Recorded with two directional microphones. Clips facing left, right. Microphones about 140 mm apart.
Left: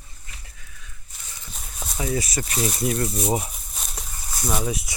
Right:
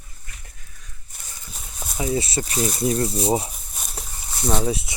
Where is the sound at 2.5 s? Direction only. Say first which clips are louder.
Right 1 dB; centre (ahead or behind).